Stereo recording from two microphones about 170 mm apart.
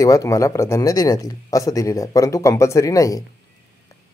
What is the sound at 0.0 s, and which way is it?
Speech, 20° left (ahead or behind).